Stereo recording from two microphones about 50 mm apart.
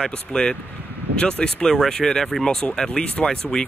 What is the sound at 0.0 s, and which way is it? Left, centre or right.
Speech, centre.